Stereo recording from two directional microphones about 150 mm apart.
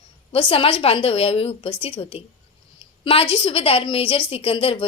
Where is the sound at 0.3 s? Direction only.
35° left (ahead or behind).